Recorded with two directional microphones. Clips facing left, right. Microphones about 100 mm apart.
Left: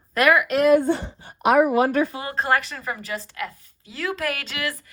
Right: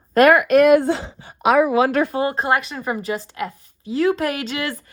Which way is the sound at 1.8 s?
75° right (ahead or behind).